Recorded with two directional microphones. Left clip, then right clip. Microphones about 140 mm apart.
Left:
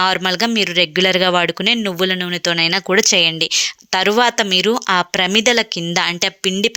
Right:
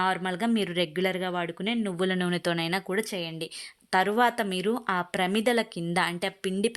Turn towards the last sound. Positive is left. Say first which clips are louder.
# left 11 dB
turn(degrees=20)  # may be behind; listen again after turning